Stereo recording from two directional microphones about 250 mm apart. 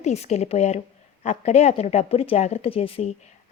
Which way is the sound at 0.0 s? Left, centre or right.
Left.